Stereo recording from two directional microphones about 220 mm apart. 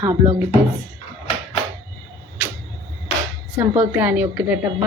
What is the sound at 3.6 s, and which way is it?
Speech, 10° right (ahead or behind).